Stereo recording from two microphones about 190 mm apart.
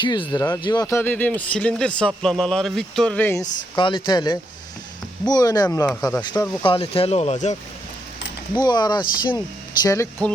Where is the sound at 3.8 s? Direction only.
25° left (ahead or behind).